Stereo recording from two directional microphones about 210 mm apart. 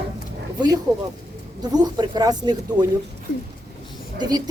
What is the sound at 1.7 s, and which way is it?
A man's voice, 20° right (ahead or behind).